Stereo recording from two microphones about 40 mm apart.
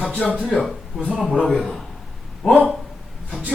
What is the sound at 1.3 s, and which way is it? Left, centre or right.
Speech, centre.